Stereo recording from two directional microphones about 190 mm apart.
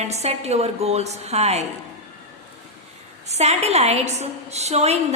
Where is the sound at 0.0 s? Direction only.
35° right (ahead or behind).